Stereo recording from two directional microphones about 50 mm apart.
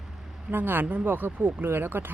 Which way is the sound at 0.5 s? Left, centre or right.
Right.